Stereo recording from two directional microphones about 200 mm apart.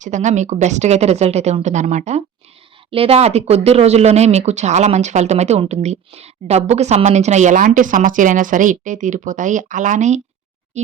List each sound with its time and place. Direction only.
0.0 s speech: 35° right (ahead or behind)